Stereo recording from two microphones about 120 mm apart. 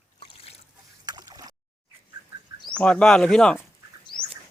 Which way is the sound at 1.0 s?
35° right (ahead or behind).